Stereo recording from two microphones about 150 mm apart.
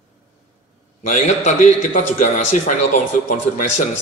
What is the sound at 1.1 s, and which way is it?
A man's voice, 55° left (ahead or behind).